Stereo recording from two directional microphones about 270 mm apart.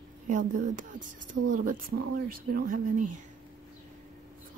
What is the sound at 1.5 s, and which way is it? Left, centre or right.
A woman's voice, right.